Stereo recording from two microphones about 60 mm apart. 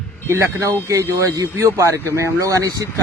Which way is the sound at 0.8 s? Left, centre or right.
Right.